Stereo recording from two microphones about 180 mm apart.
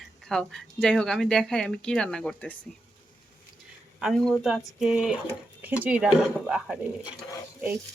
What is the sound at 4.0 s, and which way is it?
Speech, centre (ahead or behind).